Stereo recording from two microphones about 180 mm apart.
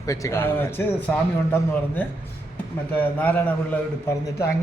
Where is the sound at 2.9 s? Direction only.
10° left (ahead or behind).